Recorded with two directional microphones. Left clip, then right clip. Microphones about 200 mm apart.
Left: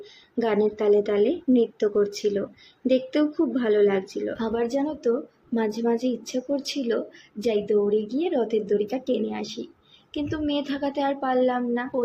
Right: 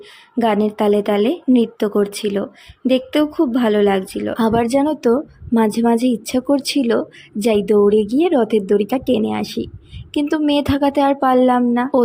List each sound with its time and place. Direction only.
0.3 s speech: 40° right (ahead or behind)